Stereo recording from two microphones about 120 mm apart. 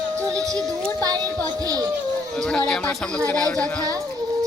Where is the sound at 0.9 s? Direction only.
30° right (ahead or behind).